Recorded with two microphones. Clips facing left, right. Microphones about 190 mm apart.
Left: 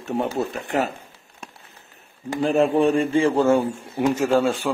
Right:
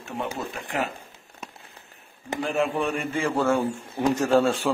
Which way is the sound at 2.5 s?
35° left (ahead or behind).